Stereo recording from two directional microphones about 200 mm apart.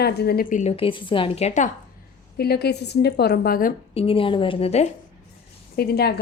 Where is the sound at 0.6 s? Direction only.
30° left (ahead or behind).